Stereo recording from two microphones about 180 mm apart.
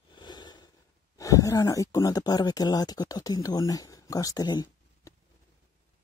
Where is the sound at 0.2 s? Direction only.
25° left (ahead or behind).